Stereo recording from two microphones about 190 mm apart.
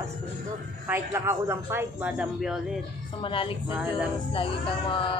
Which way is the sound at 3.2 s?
25° left (ahead or behind).